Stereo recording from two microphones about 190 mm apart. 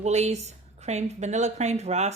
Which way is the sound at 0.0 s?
35° right (ahead or behind).